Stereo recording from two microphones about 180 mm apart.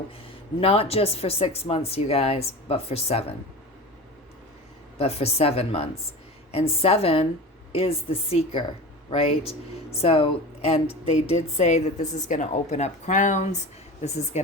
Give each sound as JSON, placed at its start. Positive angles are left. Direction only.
{"t": 0.6, "sound": "a woman's voice", "side_deg": 35}
{"t": 4.9, "sound": "a woman's voice", "side_deg": 35}